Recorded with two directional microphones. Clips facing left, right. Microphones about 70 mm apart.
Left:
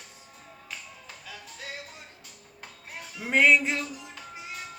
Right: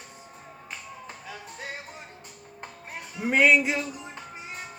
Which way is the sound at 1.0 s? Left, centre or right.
Right.